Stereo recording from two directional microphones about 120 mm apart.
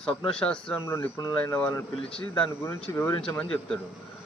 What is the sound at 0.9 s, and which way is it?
Speech, 20° left (ahead or behind).